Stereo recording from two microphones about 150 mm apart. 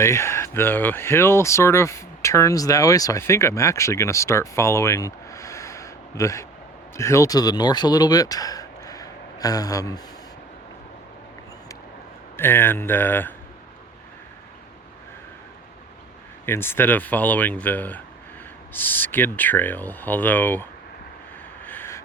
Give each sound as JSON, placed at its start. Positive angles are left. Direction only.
{"t": 0.0, "sound": "speech", "side_deg": 20}
{"t": 12.4, "sound": "speech", "side_deg": 15}
{"t": 16.5, "sound": "speech", "side_deg": 15}
{"t": 21.6, "sound": "vehicle", "side_deg": 15}